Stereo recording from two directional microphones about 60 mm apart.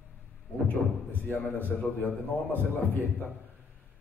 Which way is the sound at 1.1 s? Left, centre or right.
Left.